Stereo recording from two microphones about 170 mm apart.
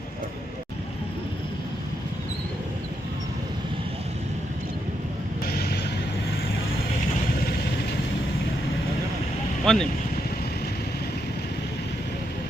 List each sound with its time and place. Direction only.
5.5 s vehicle: 70° left (ahead or behind)
9.7 s speech: centre (ahead or behind)